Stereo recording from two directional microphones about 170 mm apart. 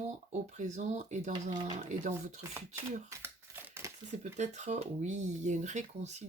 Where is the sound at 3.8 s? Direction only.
15° right (ahead or behind).